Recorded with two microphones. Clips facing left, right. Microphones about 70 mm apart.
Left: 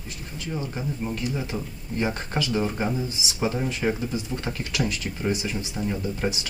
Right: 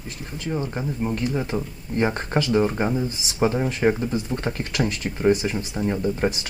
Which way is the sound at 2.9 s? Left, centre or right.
Right.